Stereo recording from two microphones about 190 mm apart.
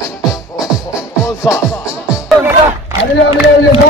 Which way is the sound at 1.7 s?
15° left (ahead or behind).